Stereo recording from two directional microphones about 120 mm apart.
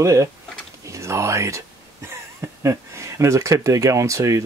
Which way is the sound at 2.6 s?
25° right (ahead or behind).